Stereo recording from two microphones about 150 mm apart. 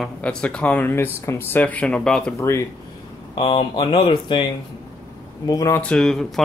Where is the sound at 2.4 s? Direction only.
20° left (ahead or behind).